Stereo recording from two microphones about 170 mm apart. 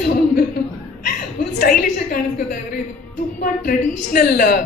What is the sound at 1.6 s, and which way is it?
A woman's voice, 55° left (ahead or behind).